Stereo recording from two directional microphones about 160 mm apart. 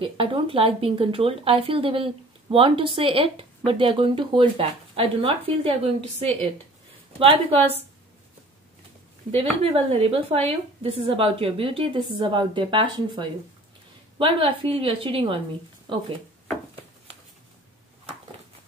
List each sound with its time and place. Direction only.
0.0 s speech: 35° right (ahead or behind)
9.3 s speech: 40° right (ahead or behind)